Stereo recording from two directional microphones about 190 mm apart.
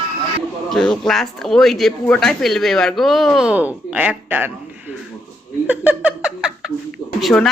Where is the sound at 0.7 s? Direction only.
Centre (ahead or behind).